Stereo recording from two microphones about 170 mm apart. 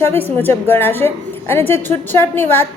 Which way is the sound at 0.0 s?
15° left (ahead or behind).